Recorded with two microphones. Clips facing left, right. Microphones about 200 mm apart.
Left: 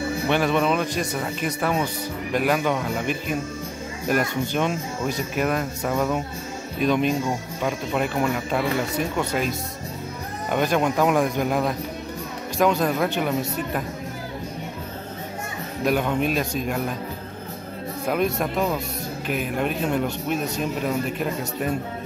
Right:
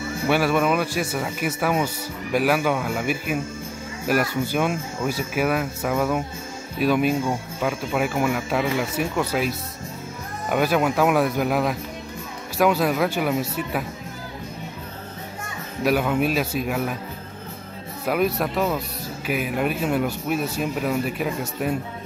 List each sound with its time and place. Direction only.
0.3 s a man's voice: 5° right (ahead or behind)
15.8 s speech: 5° right (ahead or behind)
18.0 s a man's voice: 5° right (ahead or behind)